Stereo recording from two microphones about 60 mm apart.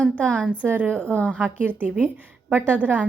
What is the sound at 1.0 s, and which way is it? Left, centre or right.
Speech, left.